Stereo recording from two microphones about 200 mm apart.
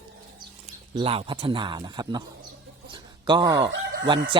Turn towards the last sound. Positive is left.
turn(degrees=-25)  # may be behind; listen again after turning